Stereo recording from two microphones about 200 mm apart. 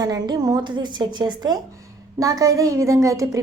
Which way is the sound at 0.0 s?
20° right (ahead or behind).